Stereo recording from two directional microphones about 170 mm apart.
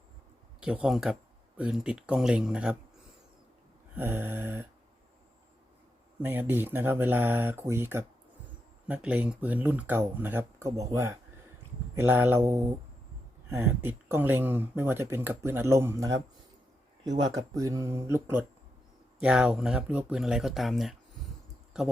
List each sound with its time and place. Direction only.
0.6 s speech: 5° right (ahead or behind)
3.9 s speech: 10° right (ahead or behind)
6.1 s speech: 10° right (ahead or behind)
17.3 s speech: 20° right (ahead or behind); by 20.9 s centre (ahead or behind)